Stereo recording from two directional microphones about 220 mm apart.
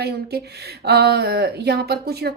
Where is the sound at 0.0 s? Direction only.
45° right (ahead or behind).